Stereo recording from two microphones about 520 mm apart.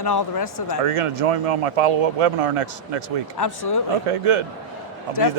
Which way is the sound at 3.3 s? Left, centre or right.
Left.